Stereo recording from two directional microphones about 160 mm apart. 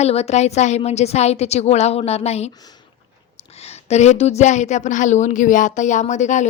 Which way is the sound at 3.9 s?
45° left (ahead or behind).